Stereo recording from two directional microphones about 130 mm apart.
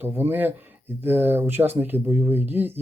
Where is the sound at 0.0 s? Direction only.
15° right (ahead or behind).